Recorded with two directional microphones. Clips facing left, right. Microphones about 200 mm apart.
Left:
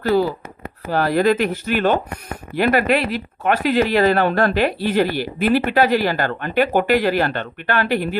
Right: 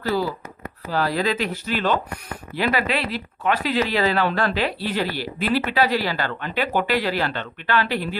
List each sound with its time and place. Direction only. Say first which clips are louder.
0.1 s speech: left 6 dB; 55° left (ahead or behind)